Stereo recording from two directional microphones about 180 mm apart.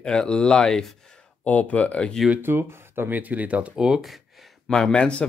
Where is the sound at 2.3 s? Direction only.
10° right (ahead or behind).